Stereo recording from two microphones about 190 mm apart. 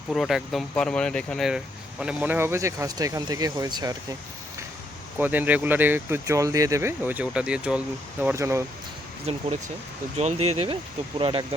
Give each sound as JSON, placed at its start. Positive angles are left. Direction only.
{"t": 0.1, "sound": "speech", "side_deg": 0}
{"t": 5.1, "sound": "speech", "side_deg": -10}
{"t": 9.3, "sound": "speech", "side_deg": -35}